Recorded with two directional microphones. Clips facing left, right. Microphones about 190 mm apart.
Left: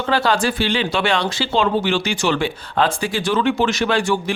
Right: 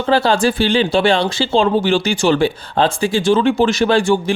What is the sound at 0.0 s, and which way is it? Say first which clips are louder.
Speech: right 4 dB; 30° right (ahead or behind).